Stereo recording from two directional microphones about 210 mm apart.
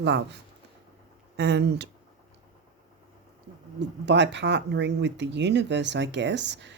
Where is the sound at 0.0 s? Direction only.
55° right (ahead or behind).